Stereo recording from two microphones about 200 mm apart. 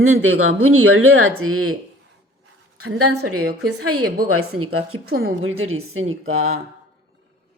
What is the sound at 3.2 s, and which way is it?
A woman's voice, 90° right.